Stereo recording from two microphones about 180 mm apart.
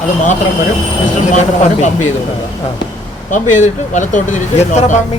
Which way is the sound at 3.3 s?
45° left (ahead or behind).